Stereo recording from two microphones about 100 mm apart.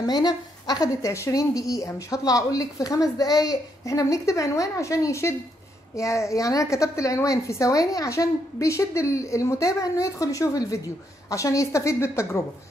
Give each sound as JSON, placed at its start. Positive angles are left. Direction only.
{"t": 0.0, "sound": "speech", "side_deg": 45}
{"t": 1.1, "sound": "a woman's voice", "side_deg": 30}